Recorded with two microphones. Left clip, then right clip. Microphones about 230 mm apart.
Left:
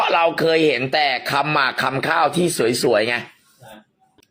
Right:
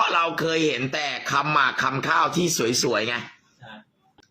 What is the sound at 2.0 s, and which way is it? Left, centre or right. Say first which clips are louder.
Speech: left 4 dB; left.